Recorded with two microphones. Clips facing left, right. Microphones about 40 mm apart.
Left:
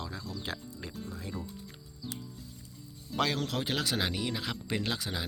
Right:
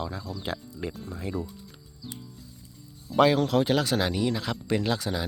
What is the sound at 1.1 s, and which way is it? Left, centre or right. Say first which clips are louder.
Speech: right 6 dB; right.